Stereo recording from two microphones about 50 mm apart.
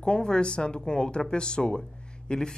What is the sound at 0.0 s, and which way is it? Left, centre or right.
Speech, centre.